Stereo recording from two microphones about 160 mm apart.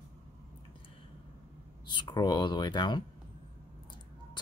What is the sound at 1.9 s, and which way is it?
Speech, 30° left (ahead or behind).